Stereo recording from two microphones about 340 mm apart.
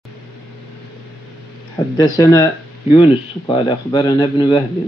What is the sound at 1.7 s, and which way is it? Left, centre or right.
Speech, centre.